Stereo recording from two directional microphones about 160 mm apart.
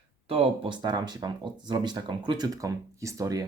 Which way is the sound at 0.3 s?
35° right (ahead or behind).